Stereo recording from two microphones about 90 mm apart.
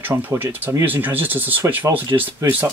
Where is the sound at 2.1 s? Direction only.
35° right (ahead or behind).